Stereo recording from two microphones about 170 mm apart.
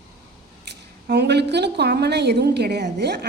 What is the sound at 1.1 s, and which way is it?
A woman's voice, 80° right.